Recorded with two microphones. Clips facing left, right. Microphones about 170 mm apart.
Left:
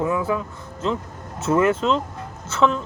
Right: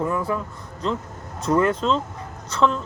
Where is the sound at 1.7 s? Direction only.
10° left (ahead or behind).